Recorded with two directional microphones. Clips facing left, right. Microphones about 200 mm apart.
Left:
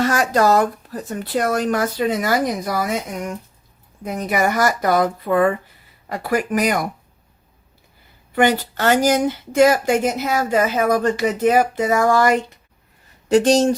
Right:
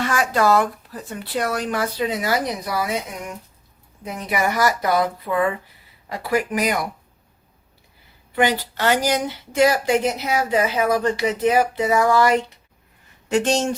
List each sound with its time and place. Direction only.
0.0 s speech: 40° left (ahead or behind)
4.0 s speech: 45° left (ahead or behind)
8.4 s speech: 50° left (ahead or behind)